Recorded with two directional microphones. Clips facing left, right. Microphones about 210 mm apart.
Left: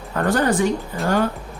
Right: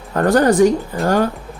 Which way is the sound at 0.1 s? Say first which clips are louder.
Right 5 dB; 40° right (ahead or behind).